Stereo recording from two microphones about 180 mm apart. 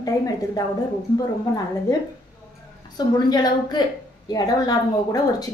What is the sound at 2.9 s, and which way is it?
A woman's voice, 25° left (ahead or behind).